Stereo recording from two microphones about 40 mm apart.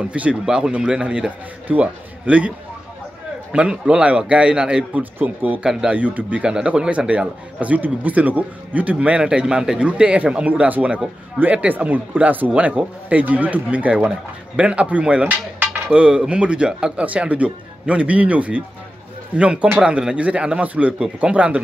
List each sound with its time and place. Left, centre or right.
0.0 s a man's voice: right
3.5 s a man's voice: right
4.9 s speech: right
6.4 s a man's voice: right
7.6 s speech: right
9.2 s a man's voice: right
9.8 s speech: right
11.4 s speech: right
17.0 s a man's voice: right